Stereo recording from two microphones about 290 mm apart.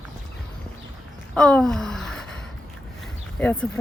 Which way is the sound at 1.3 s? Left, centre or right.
Centre.